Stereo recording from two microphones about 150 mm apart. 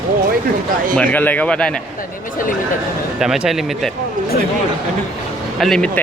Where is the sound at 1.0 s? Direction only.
10° left (ahead or behind).